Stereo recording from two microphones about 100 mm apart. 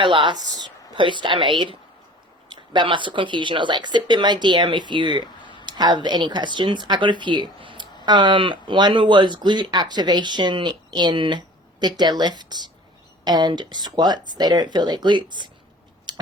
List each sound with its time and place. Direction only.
0.0 s speech: 55° right (ahead or behind)
5.4 s a sound: 50° left (ahead or behind)
5.6 s speech: 45° right (ahead or behind)